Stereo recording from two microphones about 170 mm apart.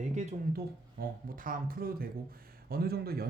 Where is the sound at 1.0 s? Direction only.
55° right (ahead or behind).